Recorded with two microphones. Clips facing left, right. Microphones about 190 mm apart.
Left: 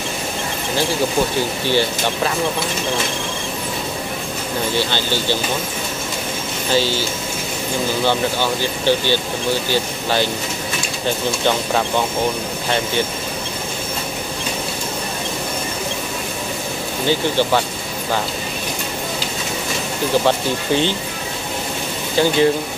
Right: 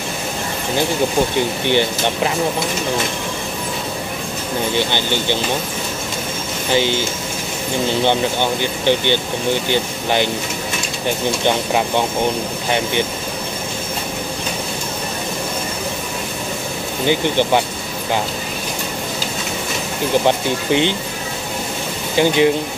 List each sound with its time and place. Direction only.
1.7 s speech: 20° right (ahead or behind)
4.7 s speech: 20° right (ahead or behind)
6.7 s speech: 20° right (ahead or behind)
17.0 s speech: 20° right (ahead or behind)
20.2 s speech: 15° right (ahead or behind)
22.1 s speech: 15° right (ahead or behind)